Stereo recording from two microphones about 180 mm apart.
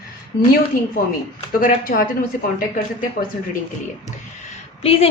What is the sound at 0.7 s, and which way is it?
Speech, 55° left (ahead or behind).